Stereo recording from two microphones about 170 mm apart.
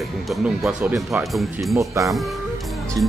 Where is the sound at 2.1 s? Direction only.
Centre (ahead or behind).